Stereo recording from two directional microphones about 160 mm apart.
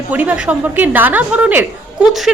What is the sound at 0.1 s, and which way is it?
A woman's voice, 10° right (ahead or behind).